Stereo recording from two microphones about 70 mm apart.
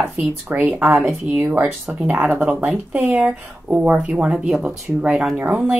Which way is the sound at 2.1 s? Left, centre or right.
Right.